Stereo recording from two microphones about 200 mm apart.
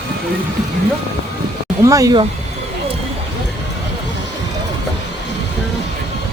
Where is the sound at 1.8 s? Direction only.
15° right (ahead or behind).